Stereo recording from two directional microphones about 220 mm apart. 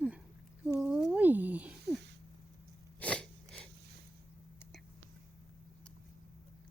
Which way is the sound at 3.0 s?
5° left (ahead or behind).